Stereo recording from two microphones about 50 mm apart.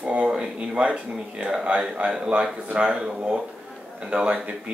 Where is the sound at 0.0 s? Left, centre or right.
Right.